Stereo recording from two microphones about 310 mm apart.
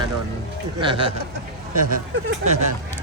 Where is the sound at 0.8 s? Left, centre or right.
Centre.